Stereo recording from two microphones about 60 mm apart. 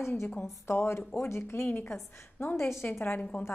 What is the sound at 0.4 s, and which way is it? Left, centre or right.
A woman's voice, left.